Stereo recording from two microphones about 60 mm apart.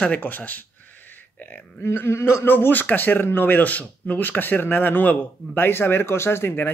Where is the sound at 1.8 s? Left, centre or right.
Left.